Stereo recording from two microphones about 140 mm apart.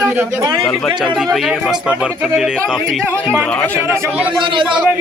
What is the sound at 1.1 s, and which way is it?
Speech, centre (ahead or behind).